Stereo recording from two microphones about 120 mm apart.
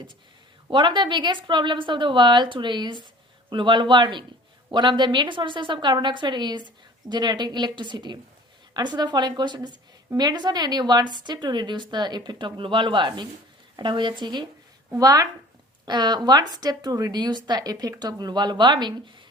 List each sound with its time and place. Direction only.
0.7 s a woman's voice: 40° right (ahead or behind)